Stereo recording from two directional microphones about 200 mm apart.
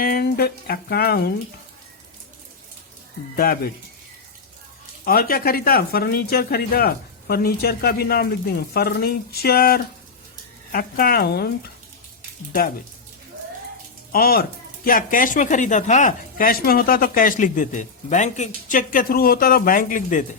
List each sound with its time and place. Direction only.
0.0 s speech: 50° left (ahead or behind)
3.3 s speech: 50° left (ahead or behind)
5.0 s speech: 45° left (ahead or behind)
14.1 s speech: 50° left (ahead or behind)